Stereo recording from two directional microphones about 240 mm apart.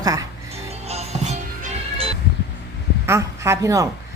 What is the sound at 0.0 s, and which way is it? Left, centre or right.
Speech, centre.